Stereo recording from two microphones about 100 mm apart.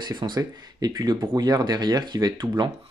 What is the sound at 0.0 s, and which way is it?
Speech, 45° right (ahead or behind).